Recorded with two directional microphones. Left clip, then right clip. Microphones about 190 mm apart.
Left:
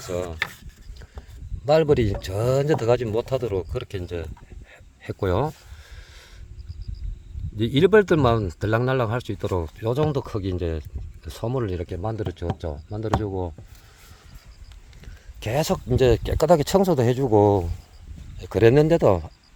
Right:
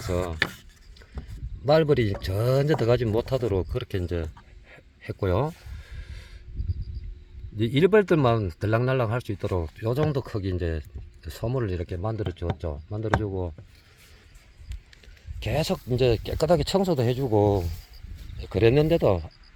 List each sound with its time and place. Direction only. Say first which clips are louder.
0.0 s a man's voice: even; 5° left (ahead or behind)
1.6 s a man's voice: left 2 dB; 5° left (ahead or behind)
4.7 s a sound: left 3 dB; 5° left (ahead or behind)
7.5 s a man's voice: left 3 dB; 5° left (ahead or behind)
15.0 s speech: left 3 dB; 20° left (ahead or behind)